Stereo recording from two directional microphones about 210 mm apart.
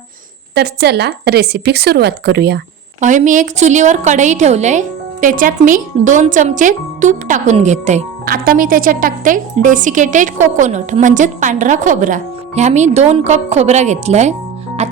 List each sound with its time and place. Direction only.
0.5 s a woman's voice: 50° right (ahead or behind)
3.0 s a woman's voice: 35° right (ahead or behind)